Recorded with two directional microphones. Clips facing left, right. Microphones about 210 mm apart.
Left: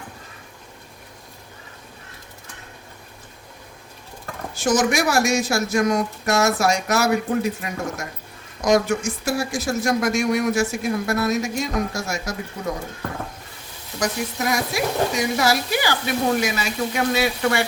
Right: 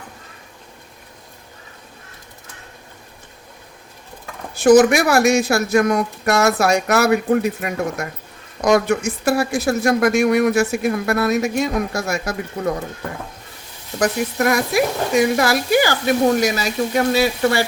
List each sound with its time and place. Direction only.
4.5 s speech: 60° right (ahead or behind)
14.0 s speech: 60° right (ahead or behind); by 17.7 s 35° right (ahead or behind)